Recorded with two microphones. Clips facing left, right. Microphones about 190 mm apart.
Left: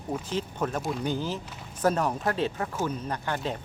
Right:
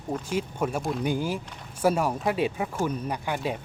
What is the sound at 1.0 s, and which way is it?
Speech, 10° right (ahead or behind).